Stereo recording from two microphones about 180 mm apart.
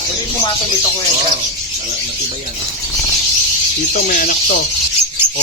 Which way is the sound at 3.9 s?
50° left (ahead or behind).